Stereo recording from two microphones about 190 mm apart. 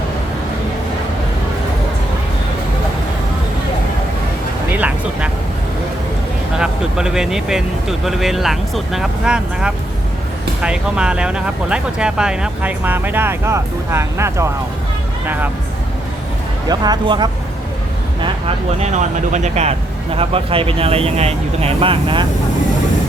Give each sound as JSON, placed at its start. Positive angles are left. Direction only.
{"t": 4.7, "sound": "vehicle", "side_deg": -5}
{"t": 6.6, "sound": "speech", "side_deg": -5}
{"t": 16.6, "sound": "speech", "side_deg": -20}
{"t": 18.2, "sound": "speech", "side_deg": -35}